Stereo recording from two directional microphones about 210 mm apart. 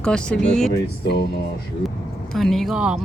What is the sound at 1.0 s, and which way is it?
Speech, 50° left (ahead or behind).